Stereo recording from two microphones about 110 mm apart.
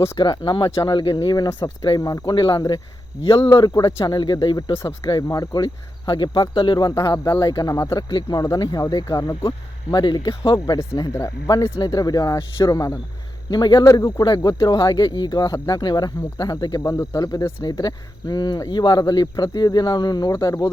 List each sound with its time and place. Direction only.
0.2 s speech: 40° left (ahead or behind)
2.3 s speech: 45° left (ahead or behind)
3.5 s speech: 35° left (ahead or behind)
4.7 s speech: 25° left (ahead or behind)
5.0 s speech: 35° left (ahead or behind)